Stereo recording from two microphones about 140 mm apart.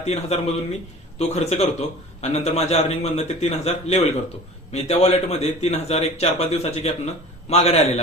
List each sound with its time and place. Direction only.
0.0 s a man's voice: 50° left (ahead or behind)